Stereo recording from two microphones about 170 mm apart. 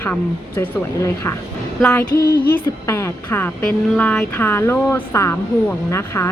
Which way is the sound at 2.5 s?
15° left (ahead or behind).